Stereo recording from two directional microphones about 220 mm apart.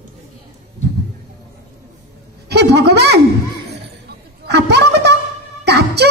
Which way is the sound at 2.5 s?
50° right (ahead or behind).